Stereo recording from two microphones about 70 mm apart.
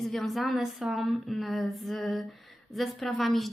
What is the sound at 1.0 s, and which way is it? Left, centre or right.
A woman's voice, centre.